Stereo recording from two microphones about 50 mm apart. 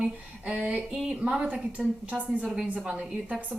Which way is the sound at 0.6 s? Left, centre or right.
Right.